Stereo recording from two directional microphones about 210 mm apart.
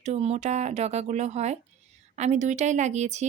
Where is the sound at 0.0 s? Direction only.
30° right (ahead or behind).